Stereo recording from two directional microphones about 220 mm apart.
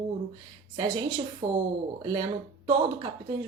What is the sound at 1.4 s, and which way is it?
Speech, 35° right (ahead or behind).